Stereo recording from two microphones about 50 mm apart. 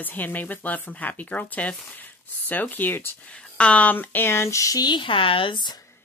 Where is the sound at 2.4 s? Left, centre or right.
Left.